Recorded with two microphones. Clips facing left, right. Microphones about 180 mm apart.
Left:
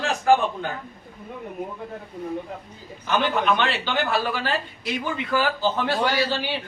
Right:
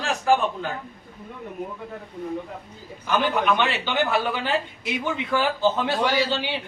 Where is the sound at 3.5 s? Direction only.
15° right (ahead or behind).